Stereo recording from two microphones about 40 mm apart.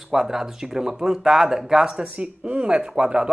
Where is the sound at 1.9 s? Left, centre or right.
Right.